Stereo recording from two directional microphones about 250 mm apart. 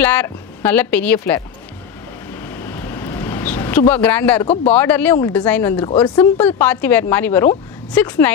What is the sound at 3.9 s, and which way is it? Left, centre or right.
Speech, centre.